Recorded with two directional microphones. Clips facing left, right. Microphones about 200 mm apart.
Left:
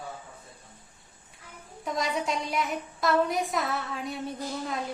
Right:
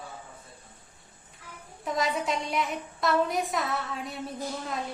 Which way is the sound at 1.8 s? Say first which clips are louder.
Right 1 dB; centre (ahead or behind).